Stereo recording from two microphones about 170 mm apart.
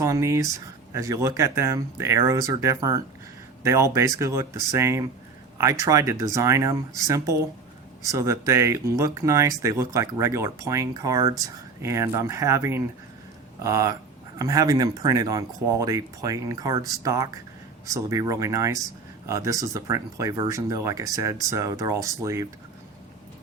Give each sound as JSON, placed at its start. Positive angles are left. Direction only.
{"t": 0.0, "sound": "speech", "side_deg": -15}